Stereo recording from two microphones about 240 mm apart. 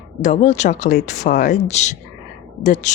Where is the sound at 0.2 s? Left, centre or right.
Left.